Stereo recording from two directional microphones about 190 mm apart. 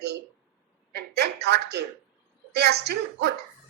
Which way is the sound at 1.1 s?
60° right (ahead or behind).